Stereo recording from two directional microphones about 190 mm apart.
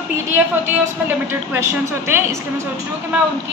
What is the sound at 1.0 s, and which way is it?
A woman's voice, 10° right (ahead or behind).